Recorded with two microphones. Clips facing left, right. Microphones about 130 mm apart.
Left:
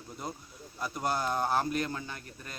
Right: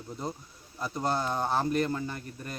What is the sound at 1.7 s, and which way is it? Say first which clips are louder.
Speech: right 5 dB; centre (ahead or behind).